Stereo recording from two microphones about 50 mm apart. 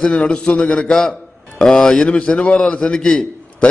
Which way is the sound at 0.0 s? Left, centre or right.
Centre.